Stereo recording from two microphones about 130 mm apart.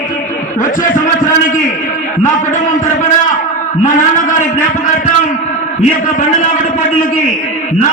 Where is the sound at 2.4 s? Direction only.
75° left (ahead or behind).